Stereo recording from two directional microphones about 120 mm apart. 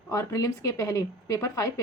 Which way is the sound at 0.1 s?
25° left (ahead or behind).